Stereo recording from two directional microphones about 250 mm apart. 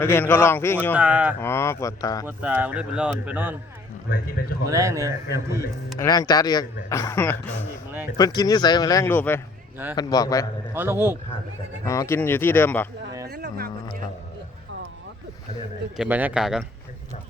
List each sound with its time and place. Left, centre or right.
0.0 s speech: centre
0.9 s a man's voice: centre
1.4 s speech: centre
2.2 s a man's voice: centre
4.7 s a man's voice: centre
6.0 s speech: centre
10.8 s a man's voice: centre
11.9 s speech: centre
13.2 s music: right
16.0 s a man's voice: centre